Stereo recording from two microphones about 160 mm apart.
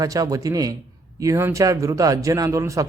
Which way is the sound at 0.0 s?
20° right (ahead or behind).